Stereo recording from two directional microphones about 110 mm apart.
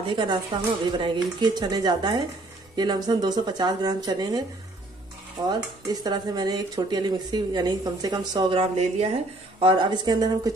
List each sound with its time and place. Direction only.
0.0 s a woman's voice: 45° right (ahead or behind)
5.4 s a woman's voice: 40° right (ahead or behind)
8.5 s a woman's voice: 70° right (ahead or behind)
9.6 s a woman's voice: 45° right (ahead or behind)